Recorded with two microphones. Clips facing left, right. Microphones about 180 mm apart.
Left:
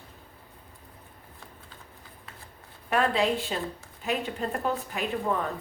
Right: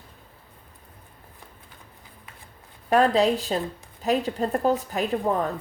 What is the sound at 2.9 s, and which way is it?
Speech, 40° right (ahead or behind).